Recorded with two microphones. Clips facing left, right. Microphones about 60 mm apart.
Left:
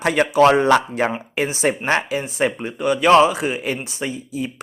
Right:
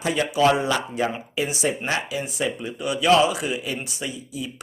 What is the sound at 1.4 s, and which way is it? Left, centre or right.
Speech, left.